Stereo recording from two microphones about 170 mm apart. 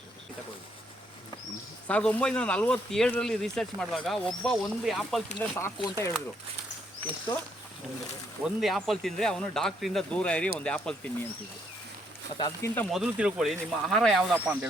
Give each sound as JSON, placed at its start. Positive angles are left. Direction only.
{"t": 1.9, "sound": "speech", "side_deg": 5}
{"t": 5.4, "sound": "speech", "side_deg": 15}
{"t": 8.4, "sound": "speech", "side_deg": 0}
{"t": 12.4, "sound": "speech", "side_deg": 25}
{"t": 12.9, "sound": "speech", "side_deg": -5}